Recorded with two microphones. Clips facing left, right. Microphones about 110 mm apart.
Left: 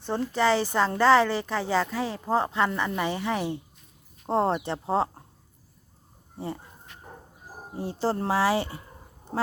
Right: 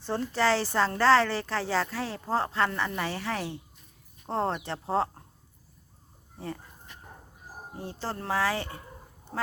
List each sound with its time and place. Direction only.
0.1 s a woman's voice: 5° left (ahead or behind)
4.3 s speech: 15° left (ahead or behind)
4.5 s a woman's voice: 5° left (ahead or behind)
6.3 s speech: 25° left (ahead or behind)
7.8 s speech: 10° left (ahead or behind)
8.0 s speech: 25° left (ahead or behind)
8.3 s speech: 10° left (ahead or behind)